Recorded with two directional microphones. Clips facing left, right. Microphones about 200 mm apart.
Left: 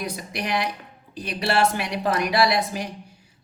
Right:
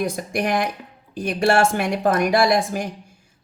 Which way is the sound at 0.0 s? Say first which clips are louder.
Right 7 dB; 50° right (ahead or behind).